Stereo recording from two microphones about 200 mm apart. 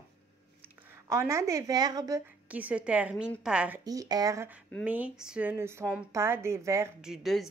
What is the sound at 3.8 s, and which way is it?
A woman's voice, 20° right (ahead or behind).